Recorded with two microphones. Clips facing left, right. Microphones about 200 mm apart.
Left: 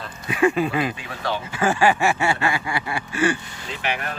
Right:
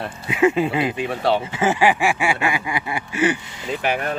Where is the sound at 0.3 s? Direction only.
20° right (ahead or behind).